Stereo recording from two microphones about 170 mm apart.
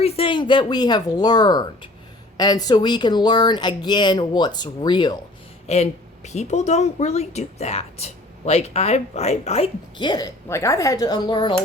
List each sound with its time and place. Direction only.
0.0 s speech: 35° left (ahead or behind)
5.6 s speech: 40° left (ahead or behind)
10.0 s speech: 25° left (ahead or behind)